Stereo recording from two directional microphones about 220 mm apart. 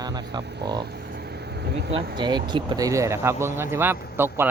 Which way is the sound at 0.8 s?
50° right (ahead or behind).